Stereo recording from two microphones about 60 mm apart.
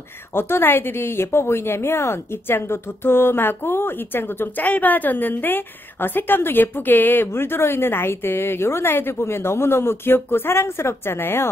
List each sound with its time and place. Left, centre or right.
0.3 s a woman's voice: left